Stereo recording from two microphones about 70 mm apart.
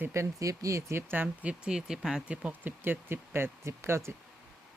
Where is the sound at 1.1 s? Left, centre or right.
Right.